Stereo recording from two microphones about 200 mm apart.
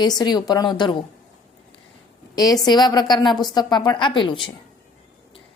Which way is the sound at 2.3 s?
20° left (ahead or behind).